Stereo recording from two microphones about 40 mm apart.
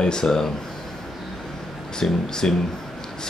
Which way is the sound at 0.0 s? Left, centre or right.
Centre.